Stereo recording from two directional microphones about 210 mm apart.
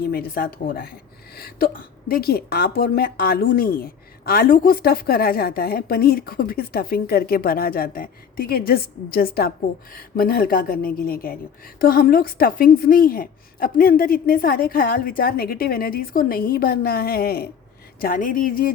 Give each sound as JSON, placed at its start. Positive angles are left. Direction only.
{"t": 0.0, "sound": "a woman's voice", "side_deg": 45}